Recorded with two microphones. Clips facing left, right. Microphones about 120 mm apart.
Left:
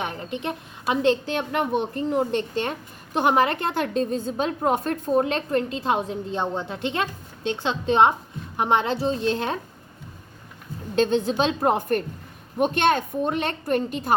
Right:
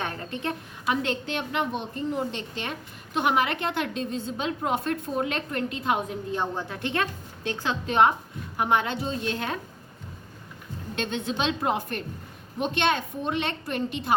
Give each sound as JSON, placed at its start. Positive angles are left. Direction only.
{"t": 0.0, "sound": "a woman's voice", "side_deg": 15}
{"t": 3.2, "sound": "a woman's voice", "side_deg": 40}
{"t": 10.9, "sound": "a woman's voice", "side_deg": 35}